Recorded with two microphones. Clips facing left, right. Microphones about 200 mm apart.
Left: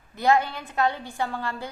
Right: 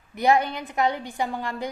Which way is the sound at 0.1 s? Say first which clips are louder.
Right 1 dB; 15° right (ahead or behind).